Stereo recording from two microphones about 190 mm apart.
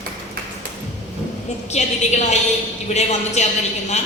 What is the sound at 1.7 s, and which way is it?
A woman's voice, 40° left (ahead or behind).